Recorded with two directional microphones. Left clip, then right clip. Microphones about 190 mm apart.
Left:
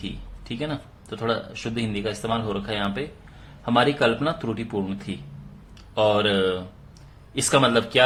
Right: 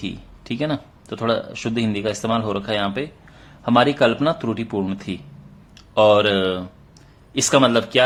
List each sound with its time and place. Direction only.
0.0 s a man's voice: 30° right (ahead or behind)